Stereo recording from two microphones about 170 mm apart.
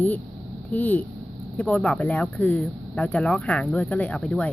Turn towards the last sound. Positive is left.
turn(degrees=5)  # may be behind; listen again after turning